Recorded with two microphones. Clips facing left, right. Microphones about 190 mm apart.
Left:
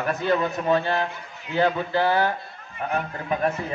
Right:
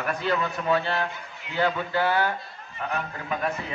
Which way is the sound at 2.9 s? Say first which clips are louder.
Left 4 dB; 40° left (ahead or behind).